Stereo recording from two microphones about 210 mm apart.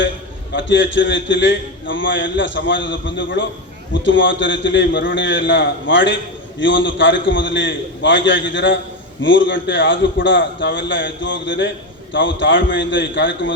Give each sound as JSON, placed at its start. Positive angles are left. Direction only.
{"t": 0.5, "sound": "a man's voice", "side_deg": 60}